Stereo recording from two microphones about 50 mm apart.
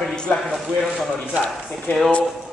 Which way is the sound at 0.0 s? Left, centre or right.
Centre.